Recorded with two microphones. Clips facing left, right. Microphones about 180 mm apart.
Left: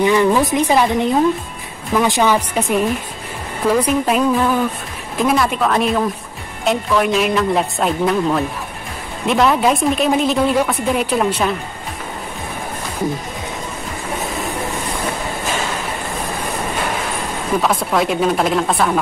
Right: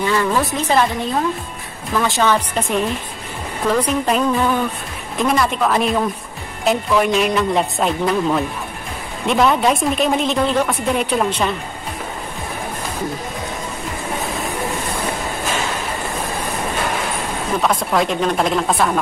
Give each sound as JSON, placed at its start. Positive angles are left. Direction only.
{"t": 0.0, "sound": "a woman's voice", "side_deg": 15}
{"t": 17.6, "sound": "speech", "side_deg": 0}